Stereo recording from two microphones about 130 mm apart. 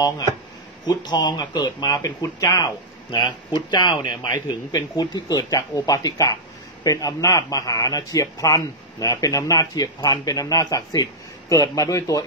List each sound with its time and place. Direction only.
0.8 s speech: 35° left (ahead or behind)